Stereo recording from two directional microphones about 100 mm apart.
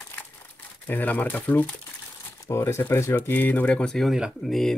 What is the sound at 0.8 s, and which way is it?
Speech, 15° left (ahead or behind).